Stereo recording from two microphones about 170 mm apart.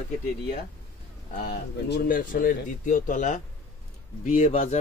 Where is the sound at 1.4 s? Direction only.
60° left (ahead or behind).